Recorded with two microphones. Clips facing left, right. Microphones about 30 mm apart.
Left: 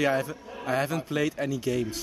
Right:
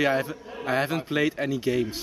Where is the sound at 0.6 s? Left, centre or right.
Right.